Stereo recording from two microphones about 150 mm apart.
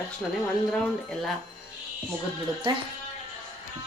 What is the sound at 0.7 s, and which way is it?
Speech, 5° left (ahead or behind).